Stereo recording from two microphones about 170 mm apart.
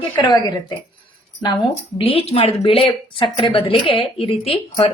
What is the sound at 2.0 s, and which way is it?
A woman's voice, 35° left (ahead or behind).